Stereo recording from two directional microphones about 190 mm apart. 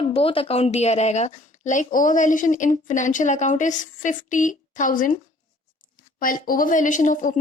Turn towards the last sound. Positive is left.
turn(degrees=45)  # may be behind; listen again after turning